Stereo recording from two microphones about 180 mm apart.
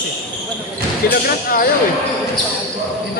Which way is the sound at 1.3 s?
55° left (ahead or behind).